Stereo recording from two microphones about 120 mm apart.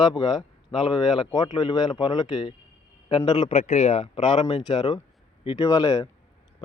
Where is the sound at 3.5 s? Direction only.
65° left (ahead or behind); by 6.0 s 30° left (ahead or behind).